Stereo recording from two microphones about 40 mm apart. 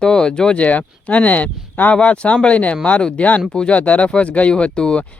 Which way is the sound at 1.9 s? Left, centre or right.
Left.